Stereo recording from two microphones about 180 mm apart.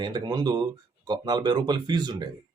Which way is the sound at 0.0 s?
25° right (ahead or behind).